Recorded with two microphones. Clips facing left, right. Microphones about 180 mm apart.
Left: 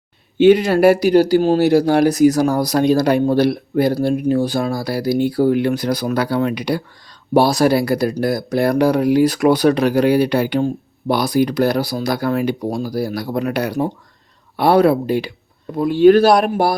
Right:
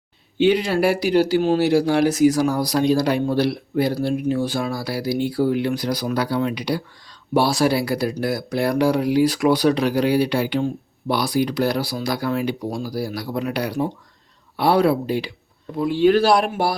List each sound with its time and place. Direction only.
0.3 s speech: 45° left (ahead or behind)
7.3 s speech: 40° left (ahead or behind)